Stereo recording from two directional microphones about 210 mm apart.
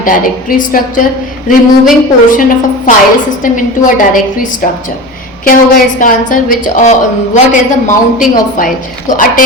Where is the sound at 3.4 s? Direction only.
40° left (ahead or behind).